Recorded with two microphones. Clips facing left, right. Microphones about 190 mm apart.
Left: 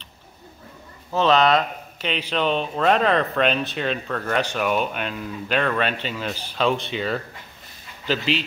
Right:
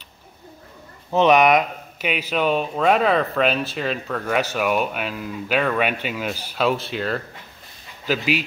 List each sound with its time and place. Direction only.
1.1 s speech: 15° right (ahead or behind)